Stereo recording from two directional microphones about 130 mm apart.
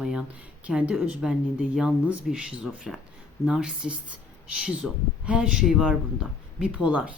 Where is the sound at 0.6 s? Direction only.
10° right (ahead or behind).